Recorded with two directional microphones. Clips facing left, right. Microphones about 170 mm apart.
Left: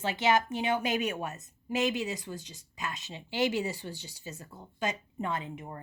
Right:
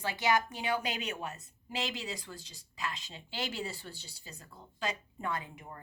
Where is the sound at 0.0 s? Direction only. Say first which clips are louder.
Left 3 dB; 25° left (ahead or behind).